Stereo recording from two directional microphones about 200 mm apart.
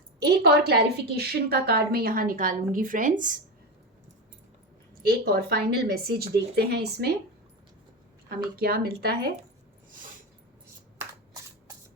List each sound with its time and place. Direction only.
0.2 s a woman's voice: 50° right (ahead or behind)
5.0 s a woman's voice: 50° right (ahead or behind)
8.5 s a woman's voice: 50° right (ahead or behind)